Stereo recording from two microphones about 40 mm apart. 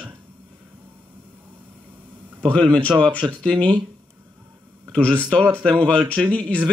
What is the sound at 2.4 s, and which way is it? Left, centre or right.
Speech, left.